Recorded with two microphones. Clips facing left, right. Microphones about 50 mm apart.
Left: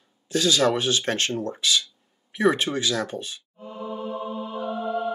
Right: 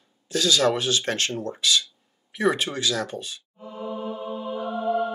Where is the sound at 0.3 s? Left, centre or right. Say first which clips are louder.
Even; centre.